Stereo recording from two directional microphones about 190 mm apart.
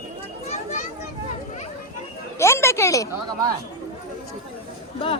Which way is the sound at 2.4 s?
15° left (ahead or behind).